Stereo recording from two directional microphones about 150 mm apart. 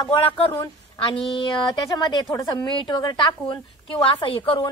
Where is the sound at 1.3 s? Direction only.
25° left (ahead or behind).